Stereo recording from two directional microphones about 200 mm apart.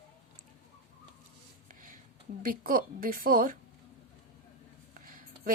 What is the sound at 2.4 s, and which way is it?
A woman's voice, 45° right (ahead or behind).